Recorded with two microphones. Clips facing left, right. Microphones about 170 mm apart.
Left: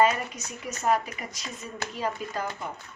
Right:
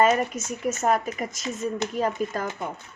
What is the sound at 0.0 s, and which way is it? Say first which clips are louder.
Speech: right 3 dB; 45° right (ahead or behind).